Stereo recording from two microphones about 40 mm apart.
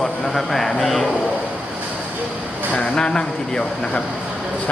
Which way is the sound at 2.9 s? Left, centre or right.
Left.